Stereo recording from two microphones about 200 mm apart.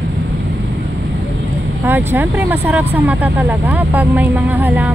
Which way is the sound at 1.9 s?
10° right (ahead or behind).